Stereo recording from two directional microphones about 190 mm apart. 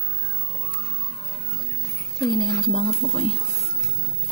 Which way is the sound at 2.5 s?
30° left (ahead or behind).